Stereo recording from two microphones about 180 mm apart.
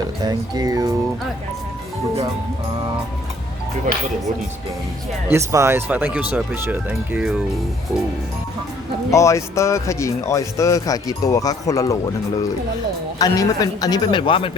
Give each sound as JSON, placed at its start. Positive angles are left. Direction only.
{"t": 0.2, "sound": "speech", "side_deg": -20}
{"t": 5.3, "sound": "speech", "side_deg": -15}
{"t": 9.1, "sound": "speech", "side_deg": 15}
{"t": 13.1, "sound": "a man's voice", "side_deg": 20}